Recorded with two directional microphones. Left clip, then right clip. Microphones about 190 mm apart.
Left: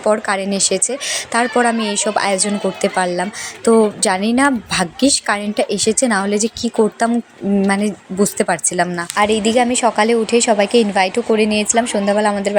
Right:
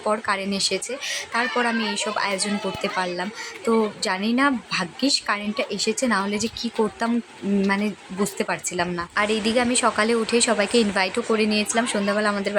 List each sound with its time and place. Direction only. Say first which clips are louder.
0.0 s a woman's voice: left 7 dB; 20° left (ahead or behind)